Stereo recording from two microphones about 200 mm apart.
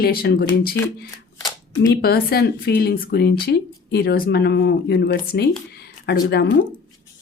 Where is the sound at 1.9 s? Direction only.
50° left (ahead or behind).